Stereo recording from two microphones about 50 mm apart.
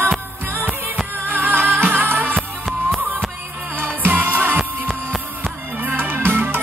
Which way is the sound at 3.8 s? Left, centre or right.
Right.